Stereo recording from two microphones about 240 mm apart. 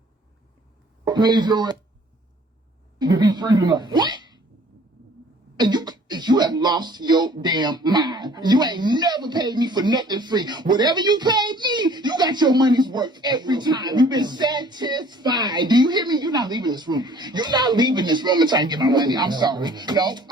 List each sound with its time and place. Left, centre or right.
1.0 s a man's voice: centre
3.0 s a sound: centre
5.5 s throat clearing: centre
7.4 s speech: centre